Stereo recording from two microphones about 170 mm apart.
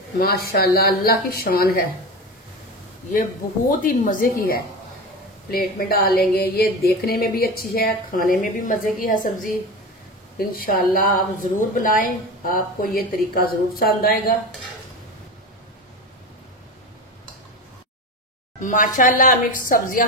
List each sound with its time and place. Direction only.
0.2 s a woman's voice: 65° left (ahead or behind)
3.7 s a woman's voice: 50° left (ahead or behind)
18.6 s a woman's voice: 50° left (ahead or behind)